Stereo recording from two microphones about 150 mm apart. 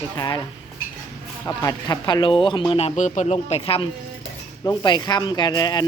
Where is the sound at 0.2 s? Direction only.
25° left (ahead or behind).